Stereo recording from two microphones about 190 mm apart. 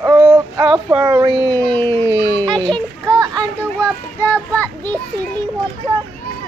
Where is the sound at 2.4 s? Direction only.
25° right (ahead or behind).